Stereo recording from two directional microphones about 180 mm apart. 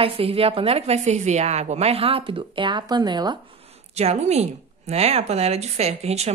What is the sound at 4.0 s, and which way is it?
A woman's voice, 35° right (ahead or behind).